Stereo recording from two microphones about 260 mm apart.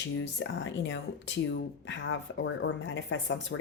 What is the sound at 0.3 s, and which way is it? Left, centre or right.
Speech, left.